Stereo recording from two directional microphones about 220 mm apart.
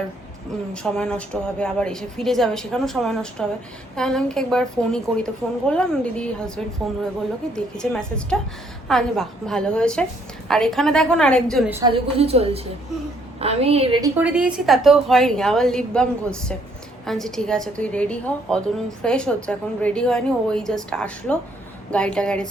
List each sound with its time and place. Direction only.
0.7 s a woman's voice: 5° left (ahead or behind)
7.5 s a woman's voice: 5° left (ahead or behind)
11.7 s a woman's voice: 20° right (ahead or behind)
14.3 s a woman's voice: 5° right (ahead or behind)